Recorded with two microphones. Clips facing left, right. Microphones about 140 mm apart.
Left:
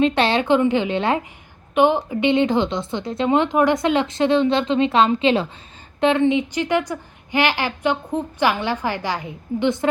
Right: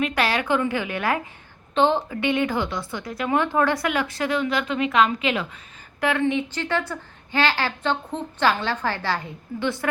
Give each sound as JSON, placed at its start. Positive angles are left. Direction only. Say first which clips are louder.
{"t": 0.0, "sound": "a woman's voice", "louder": "left 6 dB", "side_deg": 25}
{"t": 1.7, "sound": "a woman's voice", "louder": "left 3 dB", "side_deg": 15}